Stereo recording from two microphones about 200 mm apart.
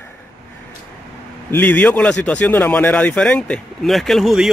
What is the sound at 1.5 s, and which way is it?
A man's voice, 10° left (ahead or behind).